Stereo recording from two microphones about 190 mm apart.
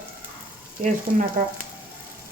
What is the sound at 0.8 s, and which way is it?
Speech, 40° right (ahead or behind).